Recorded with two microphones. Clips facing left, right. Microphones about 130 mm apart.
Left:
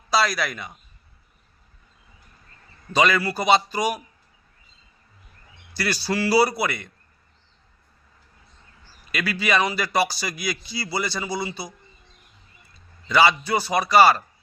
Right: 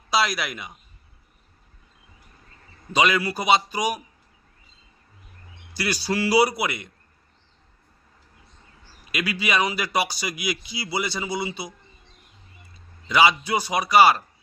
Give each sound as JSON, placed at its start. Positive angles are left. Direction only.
{"t": 0.1, "sound": "speech", "side_deg": -15}
{"t": 2.9, "sound": "speech", "side_deg": -15}
{"t": 5.7, "sound": "speech", "side_deg": -15}
{"t": 9.1, "sound": "speech", "side_deg": -15}
{"t": 13.1, "sound": "speech", "side_deg": -15}